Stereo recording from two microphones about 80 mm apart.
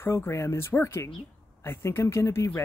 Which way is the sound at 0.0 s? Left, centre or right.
Left.